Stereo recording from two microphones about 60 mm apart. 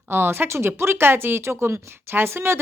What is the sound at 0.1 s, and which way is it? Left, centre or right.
Speech, right.